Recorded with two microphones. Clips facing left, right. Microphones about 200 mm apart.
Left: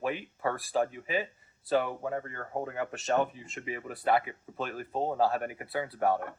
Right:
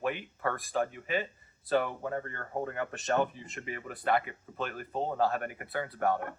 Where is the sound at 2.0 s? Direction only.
10° left (ahead or behind).